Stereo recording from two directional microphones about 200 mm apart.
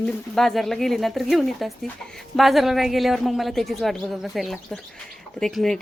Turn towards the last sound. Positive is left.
turn(degrees=0)  # may be behind; listen again after turning